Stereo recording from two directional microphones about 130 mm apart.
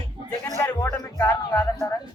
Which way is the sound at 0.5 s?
25° left (ahead or behind).